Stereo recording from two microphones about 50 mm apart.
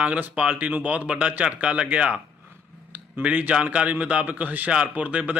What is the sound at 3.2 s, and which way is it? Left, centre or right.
Speech, right.